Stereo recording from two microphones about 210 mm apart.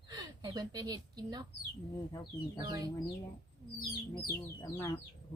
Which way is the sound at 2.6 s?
20° right (ahead or behind).